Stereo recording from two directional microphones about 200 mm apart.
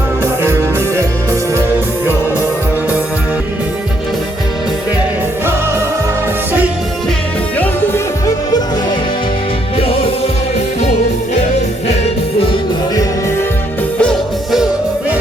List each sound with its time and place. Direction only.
0.4 s music: 15° right (ahead or behind)
11.9 s music: 30° left (ahead or behind)
14.0 s music: centre (ahead or behind)